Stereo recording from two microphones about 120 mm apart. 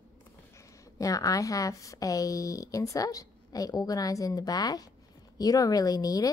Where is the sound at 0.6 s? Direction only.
30° left (ahead or behind).